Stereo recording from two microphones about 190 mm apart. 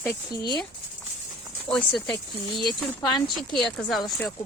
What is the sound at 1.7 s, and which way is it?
Speech, 5° left (ahead or behind).